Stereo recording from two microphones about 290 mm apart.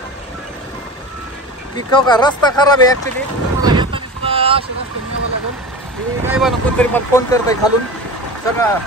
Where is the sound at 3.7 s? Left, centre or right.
Centre.